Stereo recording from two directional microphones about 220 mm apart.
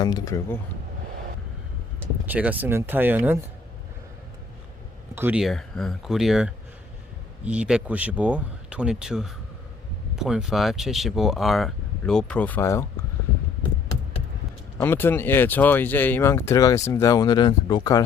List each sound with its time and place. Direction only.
0.0 s speech: 15° left (ahead or behind)
2.2 s speech: 5° right (ahead or behind)
5.1 s speech: 5° right (ahead or behind); by 12.8 s 10° left (ahead or behind)
14.8 s speech: 10° left (ahead or behind)